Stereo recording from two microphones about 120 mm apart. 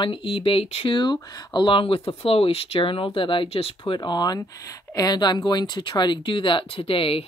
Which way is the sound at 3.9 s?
35° left (ahead or behind).